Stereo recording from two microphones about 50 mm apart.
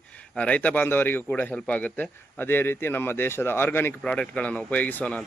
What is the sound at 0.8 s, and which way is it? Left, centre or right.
Speech, left.